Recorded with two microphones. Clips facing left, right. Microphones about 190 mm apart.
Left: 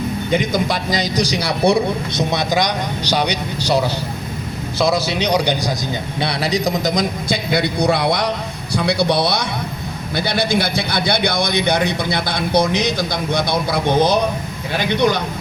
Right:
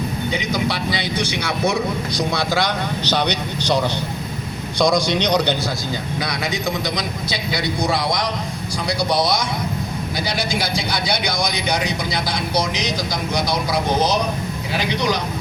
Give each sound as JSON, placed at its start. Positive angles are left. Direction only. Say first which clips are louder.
{"t": 0.3, "sound": "speech", "louder": "left 5 dB", "side_deg": 45}
{"t": 2.3, "sound": "speech", "louder": "left 3 dB", "side_deg": 15}
{"t": 6.1, "sound": "a man's voice", "louder": "left 8 dB", "side_deg": 30}